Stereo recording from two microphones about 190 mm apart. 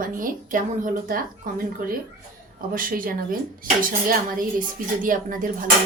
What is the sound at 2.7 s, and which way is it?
A woman's voice, 45° right (ahead or behind).